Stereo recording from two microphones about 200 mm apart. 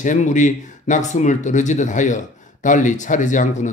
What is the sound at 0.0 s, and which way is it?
Speech, 40° left (ahead or behind).